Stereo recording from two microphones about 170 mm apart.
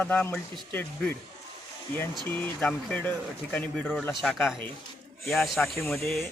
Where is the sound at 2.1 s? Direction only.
5° left (ahead or behind).